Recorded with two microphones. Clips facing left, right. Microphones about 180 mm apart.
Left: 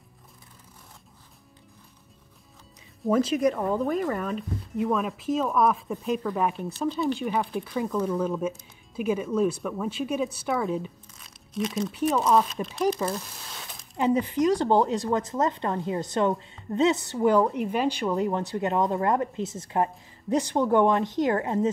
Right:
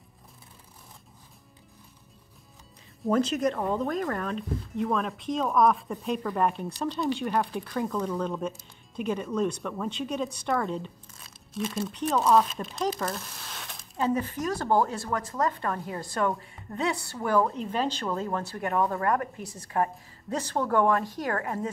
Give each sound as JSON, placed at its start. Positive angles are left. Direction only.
{"t": 3.0, "sound": "speech", "side_deg": 5}
{"t": 11.9, "sound": "speech", "side_deg": 5}
{"t": 13.0, "sound": "a sound", "side_deg": 5}
{"t": 13.9, "sound": "a woman's voice", "side_deg": 15}